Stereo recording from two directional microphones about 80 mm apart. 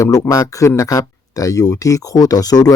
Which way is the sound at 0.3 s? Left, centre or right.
Left.